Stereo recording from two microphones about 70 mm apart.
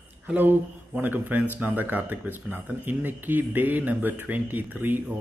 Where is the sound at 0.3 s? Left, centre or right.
Right.